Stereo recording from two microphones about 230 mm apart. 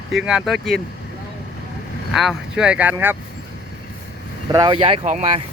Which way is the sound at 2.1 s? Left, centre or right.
Centre.